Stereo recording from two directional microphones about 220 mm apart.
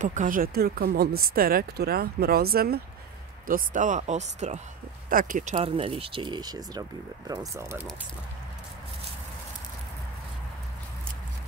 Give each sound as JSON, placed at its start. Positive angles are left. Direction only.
{"t": 0.0, "sound": "speech", "side_deg": -35}